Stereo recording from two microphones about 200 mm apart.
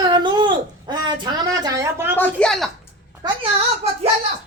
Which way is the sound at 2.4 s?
Centre (ahead or behind).